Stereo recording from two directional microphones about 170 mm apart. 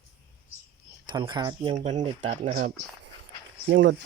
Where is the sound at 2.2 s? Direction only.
45° right (ahead or behind).